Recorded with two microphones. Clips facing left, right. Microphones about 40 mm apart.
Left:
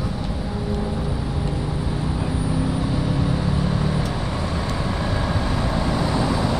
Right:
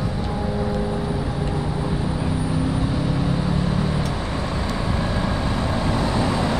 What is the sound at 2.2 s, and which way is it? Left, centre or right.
Vehicle, centre.